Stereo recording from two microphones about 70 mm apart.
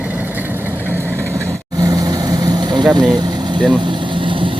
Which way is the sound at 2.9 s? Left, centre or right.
Right.